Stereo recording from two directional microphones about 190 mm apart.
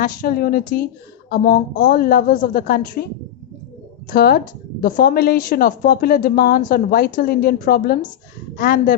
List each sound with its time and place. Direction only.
0.0 s a woman's voice: 50° left (ahead or behind)
4.1 s a woman's voice: 50° left (ahead or behind)